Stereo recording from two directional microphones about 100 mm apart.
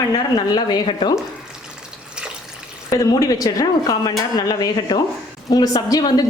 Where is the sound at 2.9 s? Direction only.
35° left (ahead or behind).